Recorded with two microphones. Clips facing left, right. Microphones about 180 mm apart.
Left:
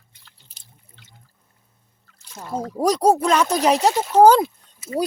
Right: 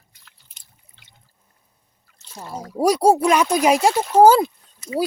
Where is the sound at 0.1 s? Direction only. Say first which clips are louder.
Left 3 dB; 30° left (ahead or behind).